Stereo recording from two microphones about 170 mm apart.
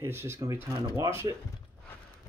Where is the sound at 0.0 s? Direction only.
15° right (ahead or behind).